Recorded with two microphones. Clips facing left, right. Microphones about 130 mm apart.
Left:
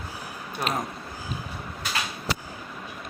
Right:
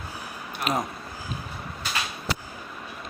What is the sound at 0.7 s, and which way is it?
Speech, 5° right (ahead or behind).